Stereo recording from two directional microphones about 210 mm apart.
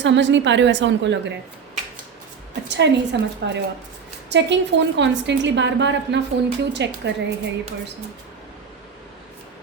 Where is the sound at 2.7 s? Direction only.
55° right (ahead or behind).